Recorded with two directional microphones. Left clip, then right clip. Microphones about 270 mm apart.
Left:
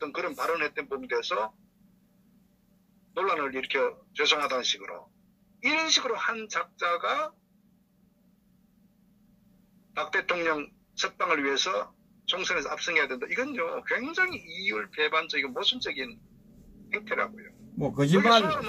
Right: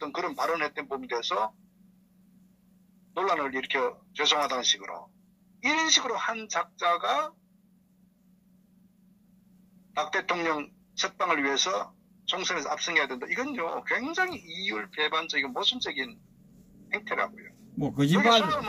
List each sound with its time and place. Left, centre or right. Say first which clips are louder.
0.0 s speech: right 1 dB; centre
3.2 s speech: even; centre
9.9 s speech: even; centre